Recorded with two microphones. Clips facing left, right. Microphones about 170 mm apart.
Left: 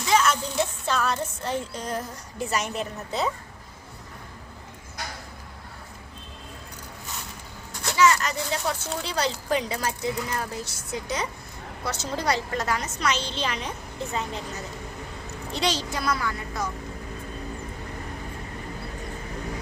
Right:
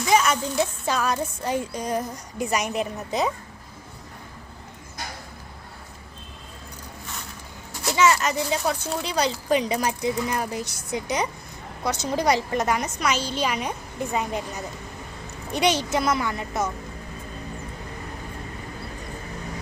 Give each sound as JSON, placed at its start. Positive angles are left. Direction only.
{"t": 0.1, "sound": "a sound", "side_deg": -10}
{"t": 0.9, "sound": "speech", "side_deg": -10}
{"t": 7.9, "sound": "a woman's voice", "side_deg": -20}